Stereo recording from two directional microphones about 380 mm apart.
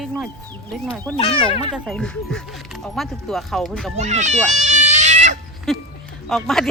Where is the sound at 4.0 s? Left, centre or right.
Centre.